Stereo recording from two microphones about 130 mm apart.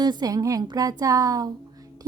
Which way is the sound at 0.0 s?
30° right (ahead or behind).